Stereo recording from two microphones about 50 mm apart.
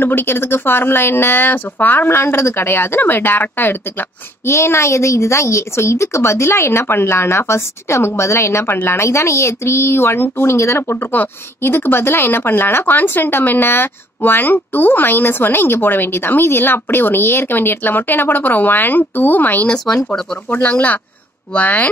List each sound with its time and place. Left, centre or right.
0.0 s speech: left
4.5 s speech: left
10.9 s speech: left